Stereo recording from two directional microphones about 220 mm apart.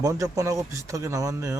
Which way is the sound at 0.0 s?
15° right (ahead or behind).